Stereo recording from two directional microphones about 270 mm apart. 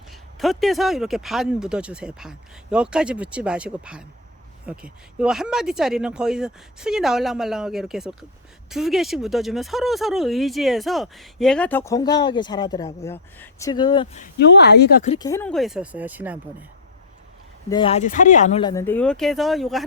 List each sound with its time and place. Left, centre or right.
0.3 s speech: centre; by 14.3 s left
14.3 s speech: left
15.2 s speech: centre
17.7 s speech: centre